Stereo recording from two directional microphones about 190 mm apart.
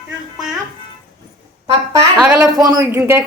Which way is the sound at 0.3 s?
5° right (ahead or behind).